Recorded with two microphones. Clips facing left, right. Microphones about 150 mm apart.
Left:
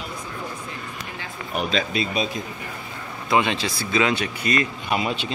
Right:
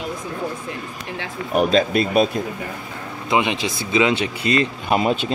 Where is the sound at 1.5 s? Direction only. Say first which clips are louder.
Right 8 dB; 45° right (ahead or behind).